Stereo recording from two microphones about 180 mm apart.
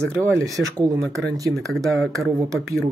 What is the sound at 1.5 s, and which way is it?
Speech, centre (ahead or behind).